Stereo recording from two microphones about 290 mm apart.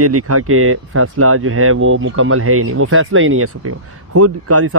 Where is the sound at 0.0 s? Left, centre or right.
Right.